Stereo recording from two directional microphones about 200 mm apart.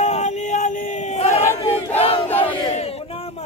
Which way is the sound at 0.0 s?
35° left (ahead or behind).